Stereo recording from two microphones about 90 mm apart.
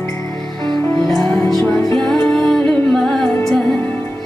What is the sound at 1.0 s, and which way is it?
Music, 5° left (ahead or behind).